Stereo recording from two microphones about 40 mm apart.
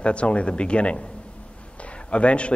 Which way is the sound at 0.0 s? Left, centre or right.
Left.